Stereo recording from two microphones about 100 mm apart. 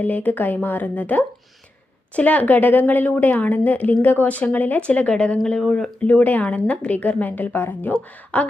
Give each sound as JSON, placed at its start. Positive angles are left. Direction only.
{"t": 0.0, "sound": "a woman's voice", "side_deg": 15}